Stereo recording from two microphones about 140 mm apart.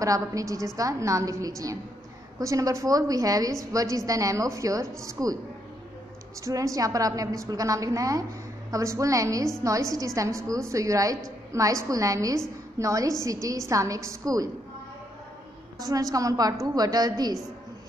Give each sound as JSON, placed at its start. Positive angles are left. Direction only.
{"t": 0.0, "sound": "a woman's voice", "side_deg": -25}
{"t": 6.4, "sound": "a woman's voice", "side_deg": -25}
{"t": 15.8, "sound": "a woman's voice", "side_deg": -25}